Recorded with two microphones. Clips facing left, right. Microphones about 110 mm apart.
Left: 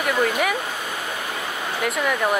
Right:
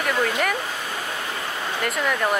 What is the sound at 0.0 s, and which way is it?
Speech, 5° left (ahead or behind).